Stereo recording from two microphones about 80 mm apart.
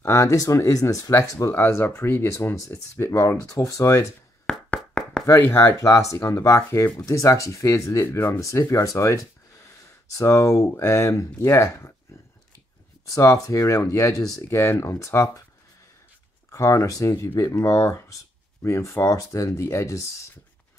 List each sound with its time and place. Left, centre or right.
0.0 s speech: left
1.5 s speech: left
4.5 s a sound: centre
5.2 s speech: left
5.8 s speech: left
13.1 s speech: left
16.5 s speech: left